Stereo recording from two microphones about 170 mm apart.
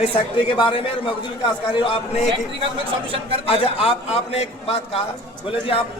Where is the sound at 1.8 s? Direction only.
40° left (ahead or behind).